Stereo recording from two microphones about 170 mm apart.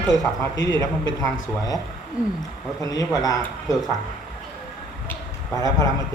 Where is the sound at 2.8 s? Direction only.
20° left (ahead or behind).